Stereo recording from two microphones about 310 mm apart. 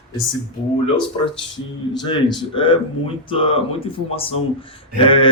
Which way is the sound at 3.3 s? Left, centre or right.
Centre.